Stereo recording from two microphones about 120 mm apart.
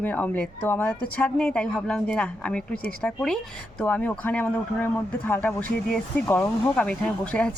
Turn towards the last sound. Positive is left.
turn(degrees=10)  # may be behind; listen again after turning